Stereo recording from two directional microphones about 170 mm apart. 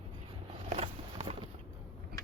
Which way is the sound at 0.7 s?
35° right (ahead or behind).